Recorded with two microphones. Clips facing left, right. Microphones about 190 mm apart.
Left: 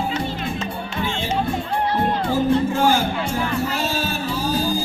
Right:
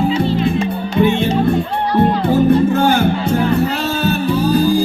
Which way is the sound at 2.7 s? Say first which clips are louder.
Right 5 dB; 60° right (ahead or behind).